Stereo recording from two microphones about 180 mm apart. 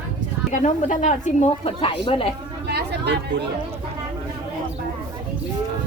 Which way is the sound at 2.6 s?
65° right (ahead or behind).